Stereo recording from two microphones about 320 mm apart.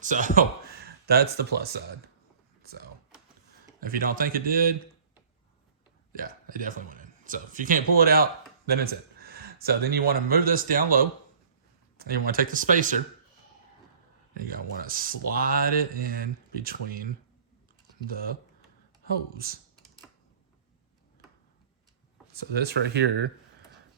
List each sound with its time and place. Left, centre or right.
0.0 s speech: right
2.6 s typing: right
3.8 s speech: right
6.1 s a man's voice: right
14.3 s speech: right
18.1 s speech: right
22.3 s speech: right